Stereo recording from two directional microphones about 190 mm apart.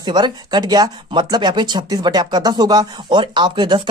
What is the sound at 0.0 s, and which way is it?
Speech, 25° right (ahead or behind).